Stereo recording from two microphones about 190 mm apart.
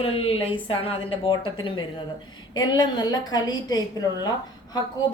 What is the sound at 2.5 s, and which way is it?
A woman's voice, 20° left (ahead or behind).